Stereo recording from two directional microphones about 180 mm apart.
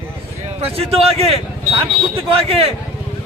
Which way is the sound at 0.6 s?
35° right (ahead or behind).